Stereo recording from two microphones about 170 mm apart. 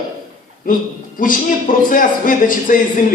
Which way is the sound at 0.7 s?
55° left (ahead or behind).